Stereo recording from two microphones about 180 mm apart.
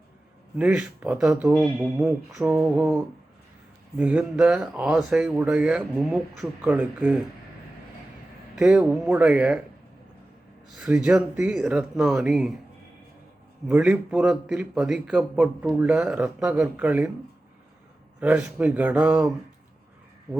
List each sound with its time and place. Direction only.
0.5 s a man's voice: 5° right (ahead or behind)
8.5 s speech: 5° right (ahead or behind)
10.8 s a man's voice: 5° right (ahead or behind)
13.7 s a man's voice: 5° right (ahead or behind)
18.2 s speech: 5° right (ahead or behind)